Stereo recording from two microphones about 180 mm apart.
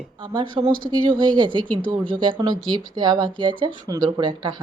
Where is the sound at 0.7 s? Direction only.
50° right (ahead or behind).